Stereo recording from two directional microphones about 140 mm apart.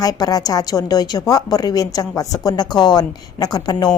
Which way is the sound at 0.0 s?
25° left (ahead or behind).